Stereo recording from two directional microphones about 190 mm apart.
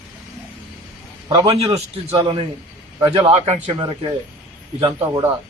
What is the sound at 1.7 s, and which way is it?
A man's voice, 35° right (ahead or behind).